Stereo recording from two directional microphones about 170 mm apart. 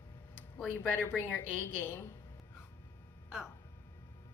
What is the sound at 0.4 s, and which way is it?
A woman's voice, 10° left (ahead or behind).